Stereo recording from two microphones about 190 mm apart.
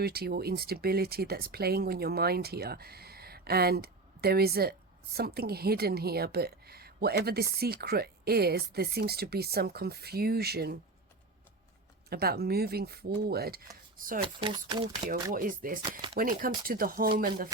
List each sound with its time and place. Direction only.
0.0 s a woman's voice: 55° right (ahead or behind)
12.0 s a woman's voice: 55° right (ahead or behind)
14.2 s speech: 25° right (ahead or behind)
15.3 s speech: 45° right (ahead or behind)
15.8 s speech: 25° right (ahead or behind)
16.1 s speech: 50° right (ahead or behind)